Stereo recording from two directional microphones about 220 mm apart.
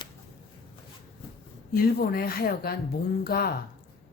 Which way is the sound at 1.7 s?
40° left (ahead or behind).